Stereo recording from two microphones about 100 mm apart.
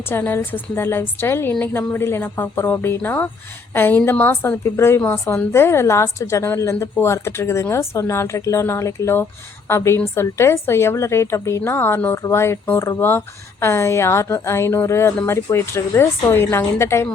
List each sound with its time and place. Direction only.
0.0 s a woman's voice: 20° left (ahead or behind)